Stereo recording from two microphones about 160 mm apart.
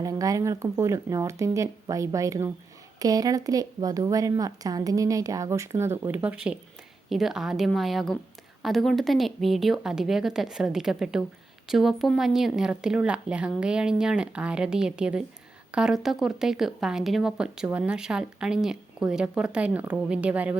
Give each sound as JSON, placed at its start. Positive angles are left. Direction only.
{"t": 0.0, "sound": "a woman's voice", "side_deg": -20}